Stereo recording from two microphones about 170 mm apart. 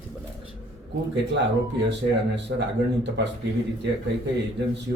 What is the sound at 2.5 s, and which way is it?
Speech, 90° right.